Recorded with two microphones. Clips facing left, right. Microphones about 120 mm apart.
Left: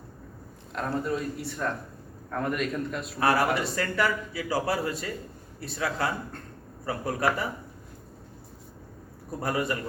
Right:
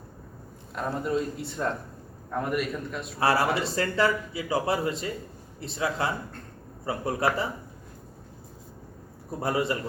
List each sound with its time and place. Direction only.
1.0 s speech: 25° right (ahead or behind)
2.3 s a man's voice: 10° right (ahead or behind)
3.2 s speech: 30° right (ahead or behind)
9.4 s speech: 25° right (ahead or behind)